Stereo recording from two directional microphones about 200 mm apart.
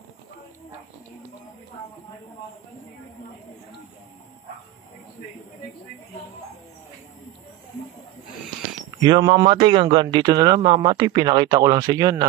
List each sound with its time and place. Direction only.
9.0 s speech: 20° right (ahead or behind)